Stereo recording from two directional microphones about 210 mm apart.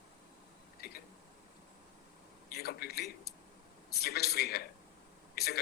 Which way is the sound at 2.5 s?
50° left (ahead or behind).